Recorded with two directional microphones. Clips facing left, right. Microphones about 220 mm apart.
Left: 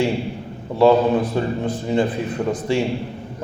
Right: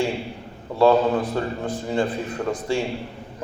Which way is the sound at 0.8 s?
20° left (ahead or behind).